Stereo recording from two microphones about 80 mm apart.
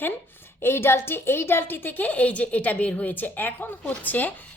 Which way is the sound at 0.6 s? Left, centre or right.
Left.